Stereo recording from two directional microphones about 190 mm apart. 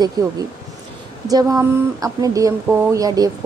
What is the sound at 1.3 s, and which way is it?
A woman's voice, 20° right (ahead or behind).